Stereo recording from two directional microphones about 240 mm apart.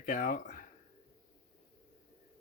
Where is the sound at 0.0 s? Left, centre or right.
Left.